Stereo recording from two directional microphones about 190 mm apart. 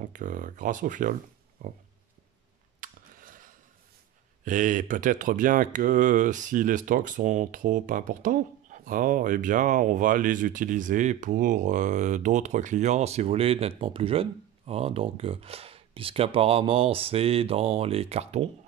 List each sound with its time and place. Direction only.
0.0 s speech: 45° right (ahead or behind)
2.8 s a sound: 45° right (ahead or behind)
4.5 s speech: 40° right (ahead or behind)